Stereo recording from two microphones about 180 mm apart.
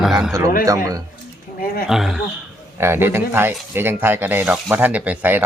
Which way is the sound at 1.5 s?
55° left (ahead or behind).